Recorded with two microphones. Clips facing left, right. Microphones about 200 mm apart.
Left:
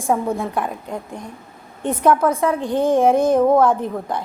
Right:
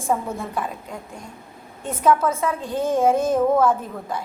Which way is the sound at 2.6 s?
15° left (ahead or behind).